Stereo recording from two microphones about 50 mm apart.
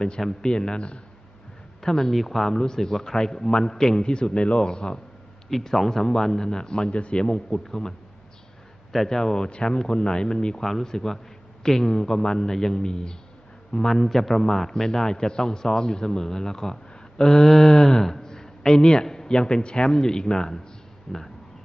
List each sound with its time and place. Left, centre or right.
0.2 s speech: centre
1.8 s a man's voice: centre
8.9 s speech: centre
21.1 s a sound: centre